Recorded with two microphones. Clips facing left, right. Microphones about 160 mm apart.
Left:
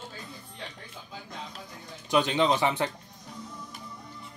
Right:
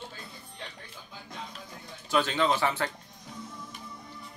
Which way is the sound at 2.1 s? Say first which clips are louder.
Left 2 dB; 20° left (ahead or behind).